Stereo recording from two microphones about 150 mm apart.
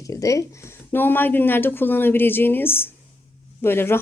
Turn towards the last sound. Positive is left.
turn(degrees=15)  # may be behind; listen again after turning